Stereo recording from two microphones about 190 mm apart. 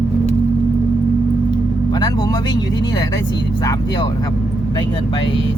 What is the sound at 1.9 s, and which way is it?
Music, 20° left (ahead or behind).